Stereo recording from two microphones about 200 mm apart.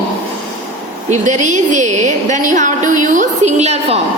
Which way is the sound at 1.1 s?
35° right (ahead or behind).